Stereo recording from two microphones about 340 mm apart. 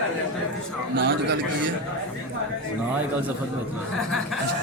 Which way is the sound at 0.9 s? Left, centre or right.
Right.